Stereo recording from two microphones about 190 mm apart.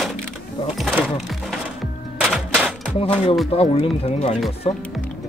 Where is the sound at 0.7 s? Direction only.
5° left (ahead or behind).